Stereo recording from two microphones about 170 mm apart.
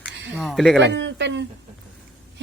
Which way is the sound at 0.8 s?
90° right.